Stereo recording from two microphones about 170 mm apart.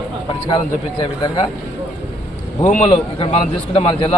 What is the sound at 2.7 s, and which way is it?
Speech, 45° left (ahead or behind).